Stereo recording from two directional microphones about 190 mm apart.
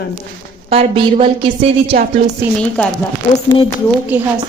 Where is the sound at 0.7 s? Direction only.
30° right (ahead or behind).